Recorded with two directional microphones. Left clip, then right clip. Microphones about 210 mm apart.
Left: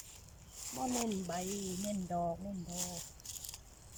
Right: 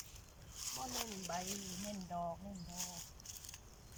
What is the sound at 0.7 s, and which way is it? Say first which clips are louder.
Speech: left 8 dB; 15° left (ahead or behind).